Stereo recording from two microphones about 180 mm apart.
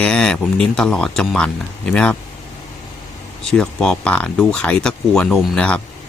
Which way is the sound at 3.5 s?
5° left (ahead or behind).